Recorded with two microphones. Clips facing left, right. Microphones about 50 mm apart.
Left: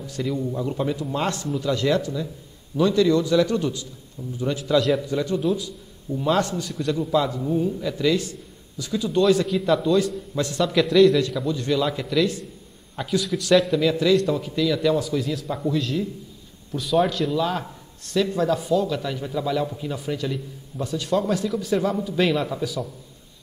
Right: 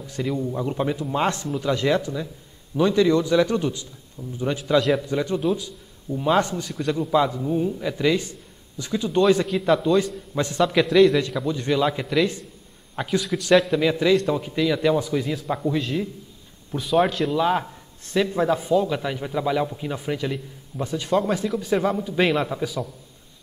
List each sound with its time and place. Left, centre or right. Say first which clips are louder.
0.0 s a man's voice: even; centre
4.6 s a man's voice: even; centre
7.5 s a man's voice: even; centre
9.5 s a man's voice: right 1 dB; centre
10.3 s a man's voice: right 4 dB; right
10.7 s a man's voice: left 1 dB; centre
16.9 s a man's voice: right 1 dB; centre
17.4 s a man's voice: right 3 dB; right